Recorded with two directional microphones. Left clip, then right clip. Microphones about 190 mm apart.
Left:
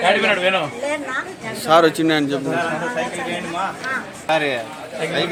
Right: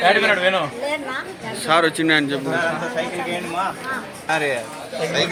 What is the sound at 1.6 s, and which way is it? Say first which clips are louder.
Speech: left 3 dB; 20° left (ahead or behind).